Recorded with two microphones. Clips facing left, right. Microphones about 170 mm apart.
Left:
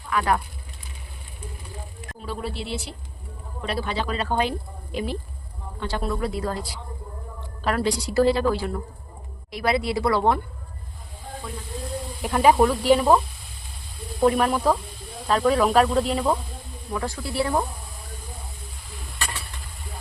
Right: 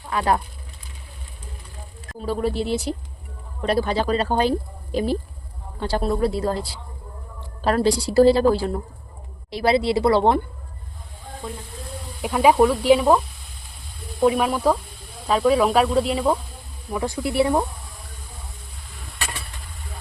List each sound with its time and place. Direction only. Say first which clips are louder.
0.1 s a woman's voice: right 2 dB; 30° right (ahead or behind)
2.2 s a woman's voice: right 8 dB; 45° right (ahead or behind); by 10.4 s 25° right (ahead or behind)
12.2 s speech: right 2 dB; centre (ahead or behind)
16.9 s a woman's voice: right 4 dB; 20° right (ahead or behind)